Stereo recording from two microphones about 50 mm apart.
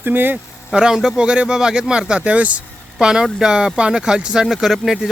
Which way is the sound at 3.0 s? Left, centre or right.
Centre.